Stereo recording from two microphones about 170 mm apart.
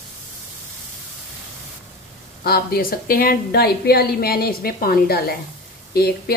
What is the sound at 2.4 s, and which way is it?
A woman's voice, 60° left (ahead or behind).